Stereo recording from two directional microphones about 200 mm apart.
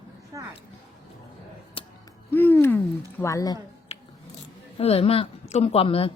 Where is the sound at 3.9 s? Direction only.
30° left (ahead or behind).